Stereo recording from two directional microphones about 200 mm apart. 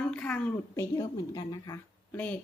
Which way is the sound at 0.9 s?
20° left (ahead or behind).